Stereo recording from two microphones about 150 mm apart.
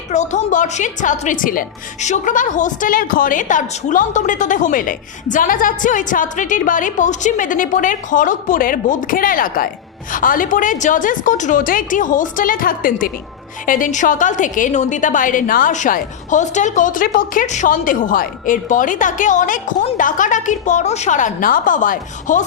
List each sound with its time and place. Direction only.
0.1 s a woman's voice: 50° left (ahead or behind)